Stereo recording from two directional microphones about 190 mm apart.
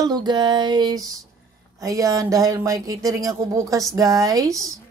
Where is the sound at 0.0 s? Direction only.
20° right (ahead or behind).